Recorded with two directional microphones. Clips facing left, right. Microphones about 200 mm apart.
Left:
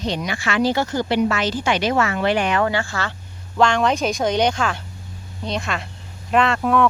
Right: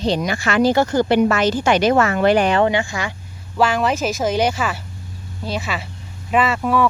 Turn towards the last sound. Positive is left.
turn(degrees=-5)  # may be behind; listen again after turning